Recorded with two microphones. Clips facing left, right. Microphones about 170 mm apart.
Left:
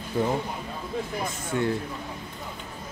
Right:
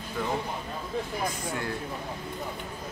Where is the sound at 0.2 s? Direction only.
25° left (ahead or behind).